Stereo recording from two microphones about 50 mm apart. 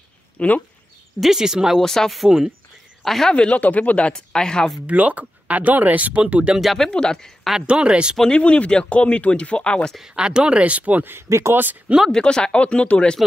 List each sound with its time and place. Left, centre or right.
0.4 s speech: left
1.2 s speech: centre
1.8 s speech: centre
3.3 s speech: left
4.1 s speech: centre
4.8 s speech: right
6.6 s speech: centre
6.9 s speech: centre
7.6 s speech: right
8.2 s speech: centre
10.1 s speech: centre
11.2 s speech: right
12.1 s speech: centre